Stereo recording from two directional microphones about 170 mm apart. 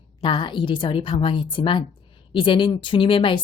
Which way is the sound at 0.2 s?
30° left (ahead or behind).